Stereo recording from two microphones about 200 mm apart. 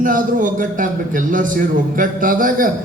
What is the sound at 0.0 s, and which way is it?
A man's voice, 40° right (ahead or behind).